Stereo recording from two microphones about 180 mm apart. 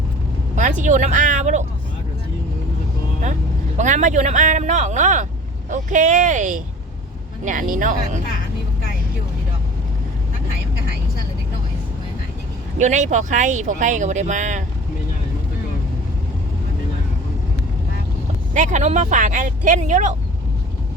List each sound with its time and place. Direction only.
0.5 s speech: 45° right (ahead or behind)
3.8 s speech: 40° right (ahead or behind)
12.8 s speech: 40° right (ahead or behind)
18.5 s speech: 45° right (ahead or behind)